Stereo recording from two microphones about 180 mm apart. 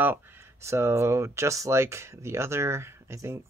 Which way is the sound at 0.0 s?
10° right (ahead or behind).